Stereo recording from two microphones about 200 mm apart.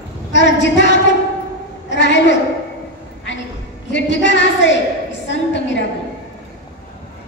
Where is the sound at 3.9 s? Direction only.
65° left (ahead or behind).